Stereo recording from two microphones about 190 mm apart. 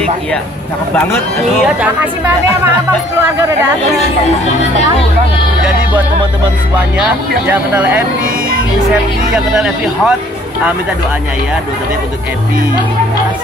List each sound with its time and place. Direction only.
7.4 s speech: 10° right (ahead or behind)
9.3 s speech: centre (ahead or behind)